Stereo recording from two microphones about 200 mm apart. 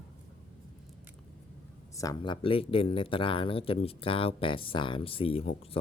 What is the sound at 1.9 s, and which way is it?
Speech, 15° left (ahead or behind).